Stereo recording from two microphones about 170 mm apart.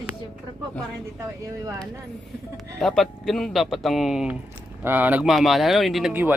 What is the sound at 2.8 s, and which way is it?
Speech, centre (ahead or behind).